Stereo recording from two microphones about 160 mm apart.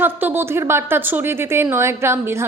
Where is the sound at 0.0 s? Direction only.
10° right (ahead or behind).